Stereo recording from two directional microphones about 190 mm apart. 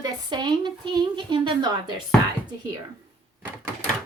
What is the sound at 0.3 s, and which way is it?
Speech, 25° right (ahead or behind).